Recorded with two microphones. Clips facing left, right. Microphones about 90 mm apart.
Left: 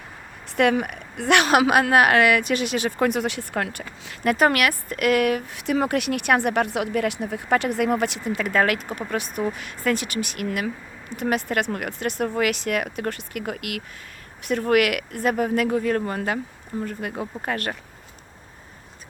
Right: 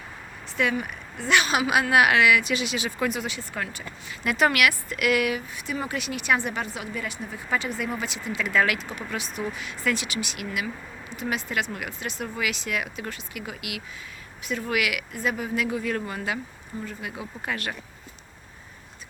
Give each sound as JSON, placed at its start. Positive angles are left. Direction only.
{"t": 0.5, "sound": "a woman's voice", "side_deg": 60}
{"t": 1.7, "sound": "speech", "side_deg": 45}
{"t": 5.5, "sound": "speech", "side_deg": 75}